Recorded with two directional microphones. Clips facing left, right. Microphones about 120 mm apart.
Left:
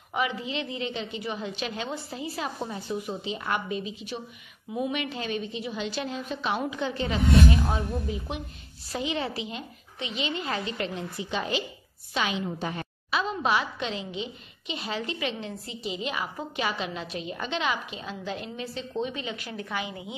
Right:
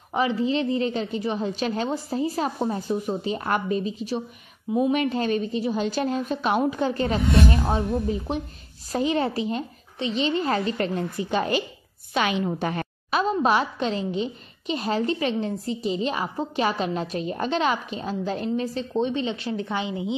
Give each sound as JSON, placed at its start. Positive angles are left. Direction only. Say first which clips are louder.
{"t": 0.1, "sound": "a woman's voice", "louder": "right 7 dB", "side_deg": -35}
{"t": 7.2, "sound": "a woman's voice", "louder": "left 2 dB", "side_deg": 0}
{"t": 7.6, "sound": "speech", "louder": "right 6 dB", "side_deg": -25}
{"t": 8.9, "sound": "a woman's voice", "louder": "right 7 dB", "side_deg": -45}
{"t": 12.1, "sound": "a woman's voice", "louder": "right 5 dB", "side_deg": -60}
{"t": 13.2, "sound": "a woman's voice", "louder": "right 6 dB", "side_deg": -40}